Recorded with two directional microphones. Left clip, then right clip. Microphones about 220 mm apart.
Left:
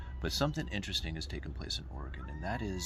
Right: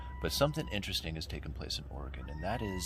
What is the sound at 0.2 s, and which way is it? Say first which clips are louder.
Speech: right 3 dB; 20° right (ahead or behind).